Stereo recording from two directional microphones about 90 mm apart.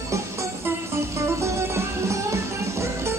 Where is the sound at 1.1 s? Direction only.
30° right (ahead or behind).